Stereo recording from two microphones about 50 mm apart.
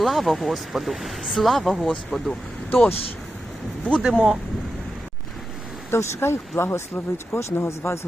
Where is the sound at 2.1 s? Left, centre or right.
Centre.